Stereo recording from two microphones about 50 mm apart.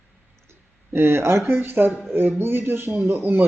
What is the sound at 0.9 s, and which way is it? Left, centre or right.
Speech, right.